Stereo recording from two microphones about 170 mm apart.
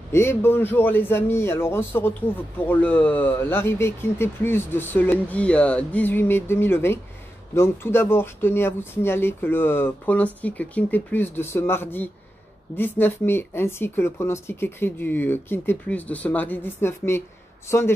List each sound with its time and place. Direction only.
0.1 s speech: 15° left (ahead or behind)